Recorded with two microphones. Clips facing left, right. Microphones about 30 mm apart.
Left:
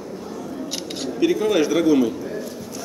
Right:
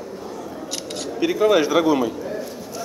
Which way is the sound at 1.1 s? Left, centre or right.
Centre.